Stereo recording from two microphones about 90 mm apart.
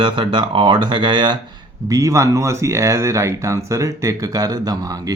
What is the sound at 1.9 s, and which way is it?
Speech, 40° right (ahead or behind).